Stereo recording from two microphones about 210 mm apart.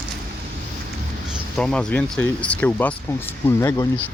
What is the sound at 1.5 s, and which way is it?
Speech, 5° left (ahead or behind).